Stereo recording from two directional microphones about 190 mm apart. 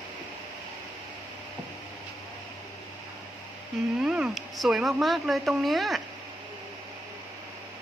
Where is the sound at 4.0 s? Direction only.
5° right (ahead or behind).